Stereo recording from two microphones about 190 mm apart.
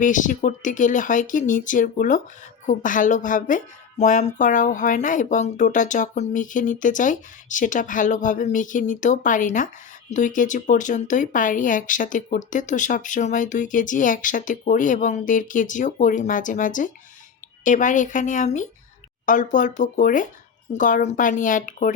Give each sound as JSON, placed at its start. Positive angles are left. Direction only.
{"t": 0.0, "sound": "a woman's voice", "side_deg": 40}